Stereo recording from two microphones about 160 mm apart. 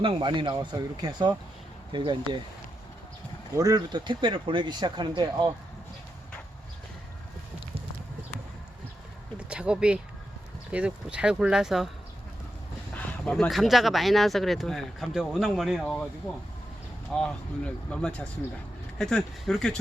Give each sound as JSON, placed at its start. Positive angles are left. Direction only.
{"t": 0.0, "sound": "speech", "side_deg": -30}
{"t": 3.6, "sound": "speech", "side_deg": -25}
{"t": 9.4, "sound": "speech", "side_deg": -5}
{"t": 12.9, "sound": "speech", "side_deg": 10}